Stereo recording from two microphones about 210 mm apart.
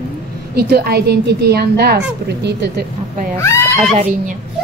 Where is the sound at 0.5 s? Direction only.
50° right (ahead or behind).